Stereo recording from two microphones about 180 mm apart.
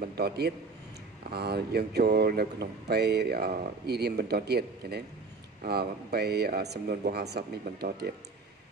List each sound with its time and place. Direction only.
1.3 s speech: 60° right (ahead or behind)